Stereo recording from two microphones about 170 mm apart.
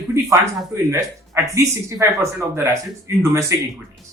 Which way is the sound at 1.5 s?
20° right (ahead or behind).